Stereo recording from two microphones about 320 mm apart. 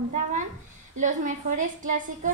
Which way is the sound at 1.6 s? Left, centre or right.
Right.